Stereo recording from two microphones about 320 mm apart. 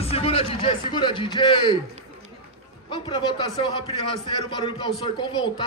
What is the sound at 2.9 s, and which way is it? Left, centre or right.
A man's voice, centre.